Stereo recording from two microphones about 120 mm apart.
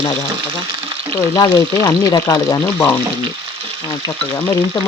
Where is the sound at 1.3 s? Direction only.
30° left (ahead or behind).